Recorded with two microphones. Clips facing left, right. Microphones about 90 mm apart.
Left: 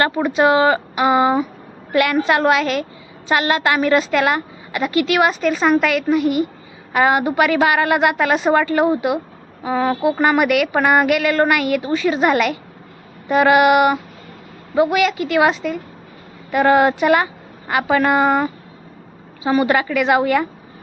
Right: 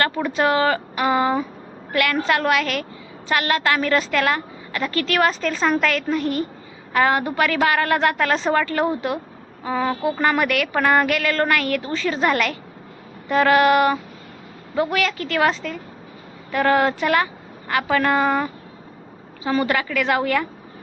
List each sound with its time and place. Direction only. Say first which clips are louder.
0.0 s a woman's voice: left 4 dB; 20° left (ahead or behind)